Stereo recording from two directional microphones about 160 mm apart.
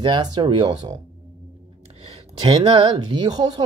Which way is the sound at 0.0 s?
25° right (ahead or behind).